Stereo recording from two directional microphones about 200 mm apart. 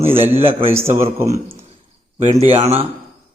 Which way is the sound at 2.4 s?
30° right (ahead or behind).